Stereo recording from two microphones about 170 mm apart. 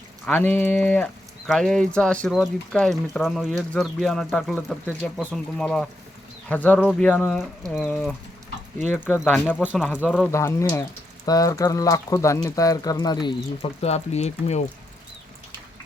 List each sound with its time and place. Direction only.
0.3 s speech: 10° left (ahead or behind)
7.7 s speech: centre (ahead or behind)
9.3 s speech: 10° left (ahead or behind)
9.6 s speech: 5° right (ahead or behind)
10.3 s speech: 15° left (ahead or behind)
13.8 s speech: 40° left (ahead or behind)